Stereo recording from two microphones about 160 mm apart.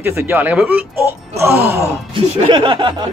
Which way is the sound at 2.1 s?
30° right (ahead or behind).